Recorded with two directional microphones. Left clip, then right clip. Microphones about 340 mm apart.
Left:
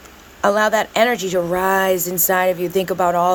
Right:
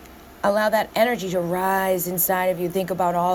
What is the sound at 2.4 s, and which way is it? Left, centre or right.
Speech, centre.